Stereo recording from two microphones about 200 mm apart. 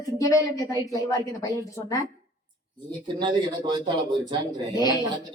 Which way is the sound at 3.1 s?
20° right (ahead or behind).